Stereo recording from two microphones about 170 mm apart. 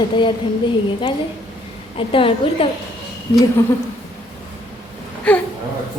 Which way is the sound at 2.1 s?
30° left (ahead or behind).